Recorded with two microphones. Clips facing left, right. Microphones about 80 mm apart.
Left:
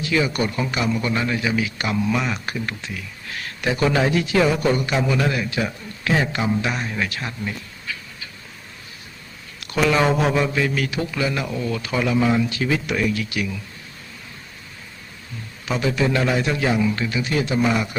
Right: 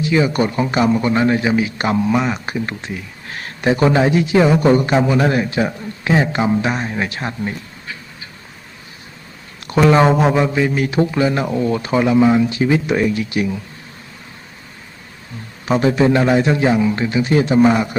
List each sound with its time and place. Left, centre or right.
0.0 s a man's voice: right
9.9 s a man's voice: right
15.6 s a man's voice: right